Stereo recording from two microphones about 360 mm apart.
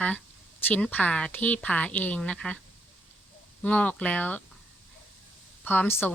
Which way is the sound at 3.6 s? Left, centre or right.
Centre.